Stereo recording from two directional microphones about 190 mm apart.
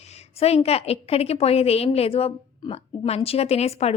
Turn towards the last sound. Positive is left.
turn(degrees=35)  # may be behind; listen again after turning